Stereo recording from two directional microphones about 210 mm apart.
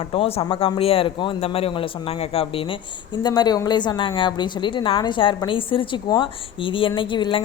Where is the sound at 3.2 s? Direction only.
20° left (ahead or behind).